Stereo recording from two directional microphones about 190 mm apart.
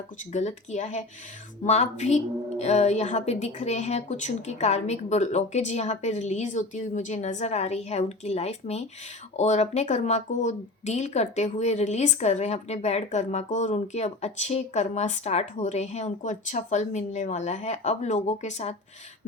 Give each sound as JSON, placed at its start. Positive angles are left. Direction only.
{"t": 0.3, "sound": "speech", "side_deg": 40}